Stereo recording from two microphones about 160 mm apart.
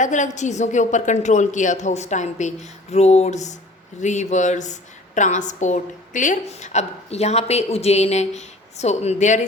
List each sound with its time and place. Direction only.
0.0 s a woman's voice: 50° left (ahead or behind)